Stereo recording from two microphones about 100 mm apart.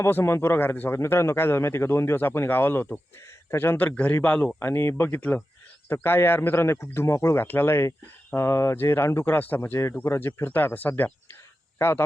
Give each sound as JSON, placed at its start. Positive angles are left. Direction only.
{"t": 0.0, "sound": "speech", "side_deg": 25}
{"t": 4.6, "sound": "speech", "side_deg": 25}